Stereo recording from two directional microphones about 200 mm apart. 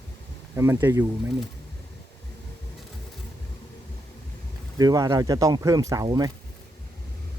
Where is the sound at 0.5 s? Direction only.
10° right (ahead or behind).